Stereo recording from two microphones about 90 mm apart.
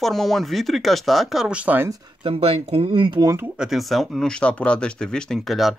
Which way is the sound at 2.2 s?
85° right.